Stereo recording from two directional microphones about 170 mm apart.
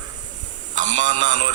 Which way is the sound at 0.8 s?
45° right (ahead or behind).